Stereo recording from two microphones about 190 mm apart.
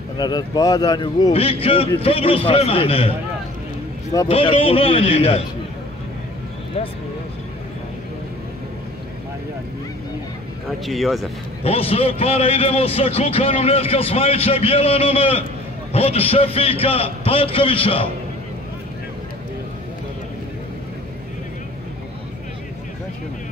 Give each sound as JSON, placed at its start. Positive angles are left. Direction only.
{"t": 0.2, "sound": "a man's voice", "side_deg": 20}
{"t": 4.3, "sound": "a man's voice", "side_deg": 30}
{"t": 10.9, "sound": "speech", "side_deg": 0}
{"t": 11.6, "sound": "a man's voice", "side_deg": 30}